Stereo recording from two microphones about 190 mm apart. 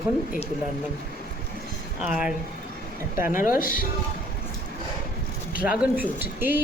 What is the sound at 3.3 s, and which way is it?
Speech, 45° left (ahead or behind).